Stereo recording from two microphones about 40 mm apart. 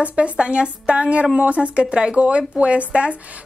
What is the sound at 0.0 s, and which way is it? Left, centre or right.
Speech, right.